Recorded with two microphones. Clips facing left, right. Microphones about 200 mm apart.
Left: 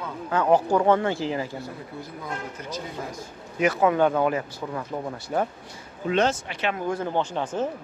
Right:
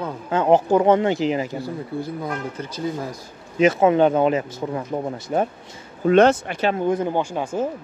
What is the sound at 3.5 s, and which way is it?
Speech, 25° right (ahead or behind).